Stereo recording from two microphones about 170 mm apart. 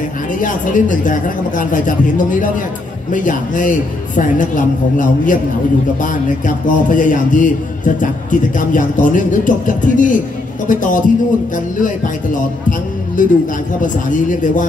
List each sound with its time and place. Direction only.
0.3 s a man's voice: 50° left (ahead or behind)